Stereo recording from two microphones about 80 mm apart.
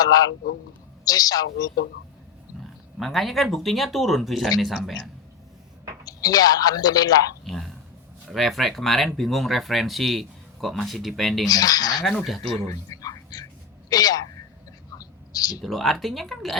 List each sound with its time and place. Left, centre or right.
0.0 s a woman's voice: left
3.0 s speech: centre
6.1 s a woman's voice: left
7.4 s a sound: centre
8.3 s speech: centre
11.4 s speech: left
12.0 s speech: centre
12.6 s whispering: left
13.9 s a woman's voice: left
14.9 s whispering: left
15.6 s speech: centre